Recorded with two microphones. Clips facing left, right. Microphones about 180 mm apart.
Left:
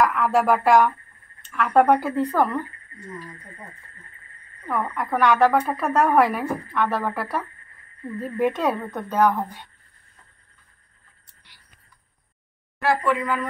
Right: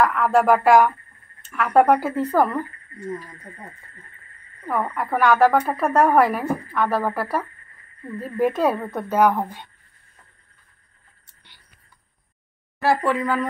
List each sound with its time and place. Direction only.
0.0 s speech: centre (ahead or behind)
4.9 s speech: 5° right (ahead or behind)
12.8 s a woman's voice: 35° right (ahead or behind)